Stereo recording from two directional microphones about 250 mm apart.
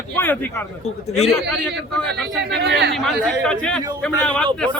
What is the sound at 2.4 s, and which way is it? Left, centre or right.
Speech, right.